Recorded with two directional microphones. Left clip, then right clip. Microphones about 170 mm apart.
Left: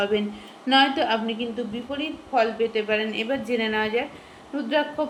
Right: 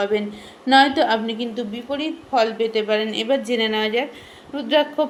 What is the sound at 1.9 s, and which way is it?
A woman's voice, 40° right (ahead or behind).